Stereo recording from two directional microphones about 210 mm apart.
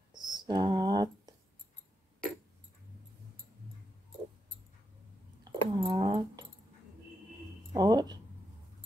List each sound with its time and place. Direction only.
0.1 s whispering: 20° right (ahead or behind)
5.4 s dog: 20° right (ahead or behind)
7.7 s a sound: 20° right (ahead or behind)